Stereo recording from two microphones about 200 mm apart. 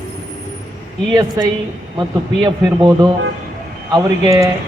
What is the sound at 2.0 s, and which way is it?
A man's voice, 15° right (ahead or behind).